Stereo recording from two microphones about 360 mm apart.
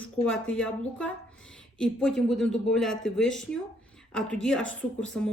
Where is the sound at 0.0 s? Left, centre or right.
Centre.